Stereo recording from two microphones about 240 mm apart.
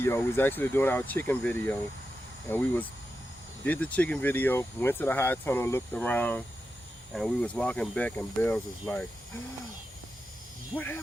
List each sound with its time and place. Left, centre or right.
0.0 s speech: centre
10.8 s speech: centre